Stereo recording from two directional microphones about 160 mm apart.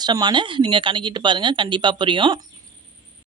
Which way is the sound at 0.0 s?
25° right (ahead or behind).